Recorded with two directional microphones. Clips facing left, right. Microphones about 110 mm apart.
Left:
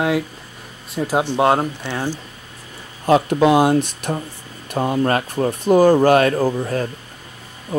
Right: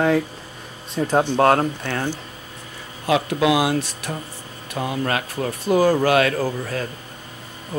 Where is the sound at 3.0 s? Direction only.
40° left (ahead or behind).